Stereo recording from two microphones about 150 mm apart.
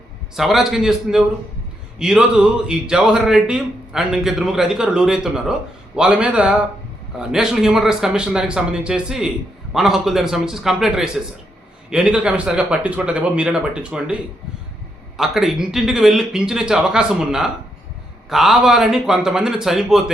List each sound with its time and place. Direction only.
0.3 s speech: centre (ahead or behind)
15.2 s speech: centre (ahead or behind)